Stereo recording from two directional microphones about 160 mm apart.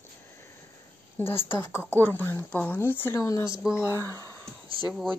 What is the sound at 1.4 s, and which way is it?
Speech, 15° left (ahead or behind).